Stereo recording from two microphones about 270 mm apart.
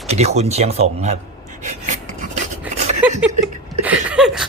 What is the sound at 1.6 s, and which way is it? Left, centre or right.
Filing, right.